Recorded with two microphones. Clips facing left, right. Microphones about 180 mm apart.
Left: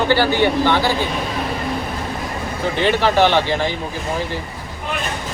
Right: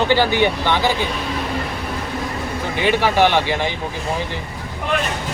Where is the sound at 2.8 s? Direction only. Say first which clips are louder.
Left 1 dB; 10° right (ahead or behind).